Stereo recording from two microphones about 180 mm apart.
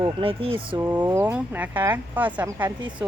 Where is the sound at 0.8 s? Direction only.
10° right (ahead or behind).